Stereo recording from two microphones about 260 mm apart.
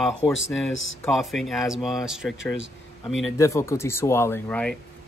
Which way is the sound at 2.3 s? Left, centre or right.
Left.